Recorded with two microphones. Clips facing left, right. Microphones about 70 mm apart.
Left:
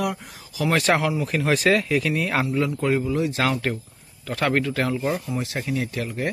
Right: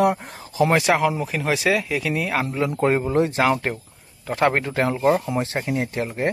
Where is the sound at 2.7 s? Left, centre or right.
Right.